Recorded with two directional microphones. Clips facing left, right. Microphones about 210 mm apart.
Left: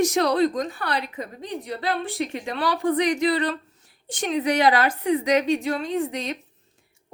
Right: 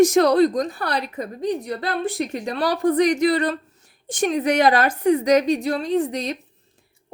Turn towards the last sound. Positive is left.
turn(degrees=-35)  # may be behind; listen again after turning